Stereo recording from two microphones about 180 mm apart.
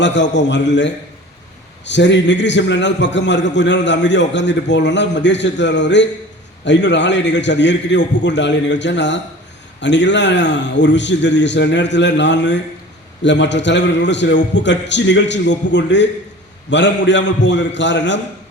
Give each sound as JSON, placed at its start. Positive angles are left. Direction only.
{"t": 0.0, "sound": "a man's voice", "side_deg": 80}